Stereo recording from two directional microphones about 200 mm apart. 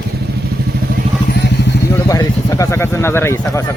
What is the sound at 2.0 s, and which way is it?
Vehicle, 15° left (ahead or behind).